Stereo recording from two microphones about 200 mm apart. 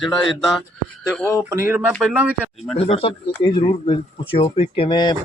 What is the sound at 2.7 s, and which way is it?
A man's voice, 30° left (ahead or behind).